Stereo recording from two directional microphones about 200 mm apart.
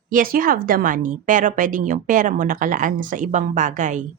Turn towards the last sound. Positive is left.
turn(degrees=-40)  # may be behind; listen again after turning